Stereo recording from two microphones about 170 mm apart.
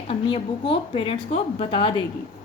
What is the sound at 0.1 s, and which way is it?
A woman's voice, 30° left (ahead or behind).